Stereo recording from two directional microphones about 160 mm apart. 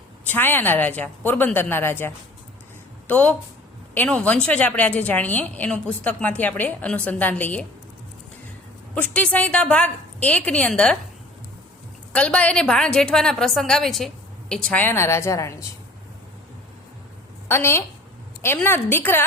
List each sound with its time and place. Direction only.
0.3 s a woman's voice: 15° left (ahead or behind)
9.0 s a woman's voice: 10° left (ahead or behind)
12.1 s a woman's voice: 10° left (ahead or behind)
17.5 s a woman's voice: 15° left (ahead or behind)